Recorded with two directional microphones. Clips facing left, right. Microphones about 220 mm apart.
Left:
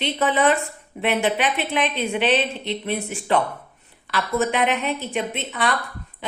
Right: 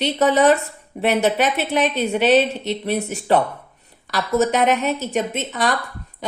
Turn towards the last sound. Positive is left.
turn(degrees=-40)  # may be behind; listen again after turning